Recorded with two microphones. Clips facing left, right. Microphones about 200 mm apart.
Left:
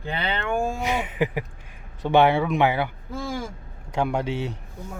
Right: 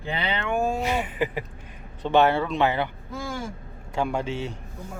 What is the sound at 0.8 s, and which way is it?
Speech, 15° left (ahead or behind).